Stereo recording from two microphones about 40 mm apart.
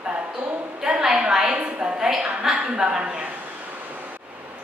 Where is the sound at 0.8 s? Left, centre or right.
Centre.